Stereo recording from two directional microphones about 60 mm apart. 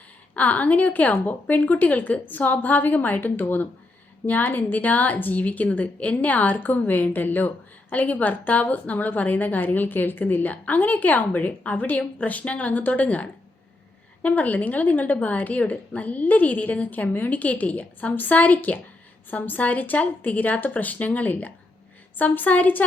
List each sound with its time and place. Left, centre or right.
0.3 s a woman's voice: left